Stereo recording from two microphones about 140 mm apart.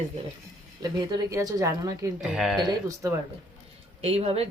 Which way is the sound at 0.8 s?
30° right (ahead or behind).